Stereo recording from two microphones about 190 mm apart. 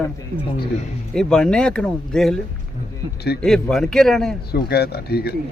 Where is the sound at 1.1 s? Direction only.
5° left (ahead or behind).